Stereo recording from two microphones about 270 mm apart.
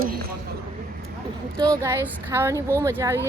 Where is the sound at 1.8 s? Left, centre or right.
Centre.